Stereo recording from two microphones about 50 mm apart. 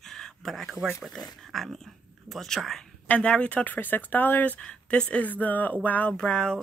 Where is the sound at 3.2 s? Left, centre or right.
Left.